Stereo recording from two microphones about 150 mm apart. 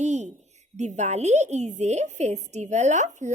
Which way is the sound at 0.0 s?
50° right (ahead or behind).